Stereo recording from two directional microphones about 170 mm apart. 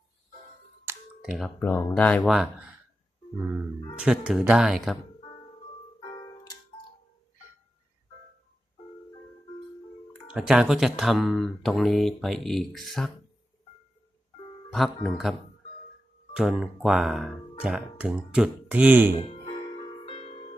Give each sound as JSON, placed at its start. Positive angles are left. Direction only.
{"t": 0.9, "sound": "clicking", "side_deg": -15}
{"t": 1.4, "sound": "speech", "side_deg": 15}
{"t": 3.9, "sound": "speech", "side_deg": -5}
{"t": 6.0, "sound": "music", "side_deg": 25}
{"t": 10.3, "sound": "speech", "side_deg": -5}
{"t": 14.7, "sound": "speech", "side_deg": 0}
{"t": 20.1, "sound": "music", "side_deg": 40}